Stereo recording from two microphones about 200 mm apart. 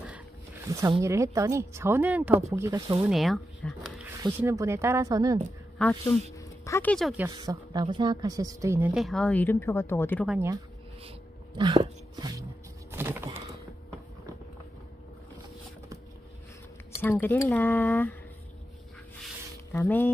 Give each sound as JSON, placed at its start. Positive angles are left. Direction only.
{"t": 0.7, "sound": "a woman's voice", "side_deg": -15}
{"t": 3.0, "sound": "speech", "side_deg": 0}
{"t": 4.2, "sound": "a woman's voice", "side_deg": -10}
{"t": 5.8, "sound": "a woman's voice", "side_deg": 0}
{"t": 6.3, "sound": "speech", "side_deg": 15}
{"t": 7.2, "sound": "a woman's voice", "side_deg": -15}
{"t": 8.9, "sound": "speech", "side_deg": 0}
{"t": 10.2, "sound": "a woman's voice", "side_deg": -5}
{"t": 11.1, "sound": "a sound", "side_deg": -25}
{"t": 12.9, "sound": "typing", "side_deg": -10}
{"t": 17.0, "sound": "speech", "side_deg": 10}
{"t": 19.7, "sound": "speech", "side_deg": 10}